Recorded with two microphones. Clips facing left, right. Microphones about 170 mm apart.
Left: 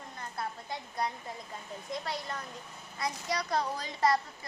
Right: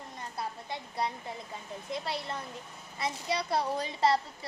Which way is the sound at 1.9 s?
25° right (ahead or behind).